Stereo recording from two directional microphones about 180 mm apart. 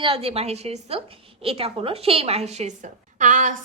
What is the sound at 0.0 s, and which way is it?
A woman's voice, 30° right (ahead or behind).